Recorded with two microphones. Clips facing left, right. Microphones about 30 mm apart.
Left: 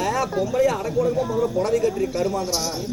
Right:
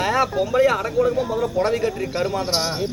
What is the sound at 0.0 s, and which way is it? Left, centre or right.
Speech, right.